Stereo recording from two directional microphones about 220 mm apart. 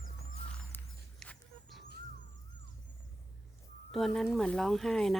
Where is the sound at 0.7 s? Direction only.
5° left (ahead or behind).